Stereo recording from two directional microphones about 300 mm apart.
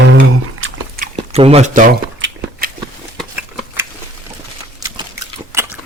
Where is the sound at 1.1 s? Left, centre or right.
Centre.